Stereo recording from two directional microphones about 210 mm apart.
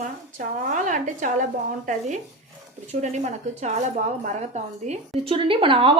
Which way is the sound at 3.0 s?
35° right (ahead or behind).